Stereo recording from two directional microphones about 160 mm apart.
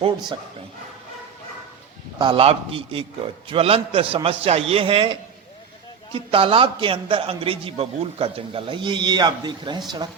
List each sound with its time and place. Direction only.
2.1 s a man's voice: 30° right (ahead or behind)
6.1 s a man's voice: 35° right (ahead or behind)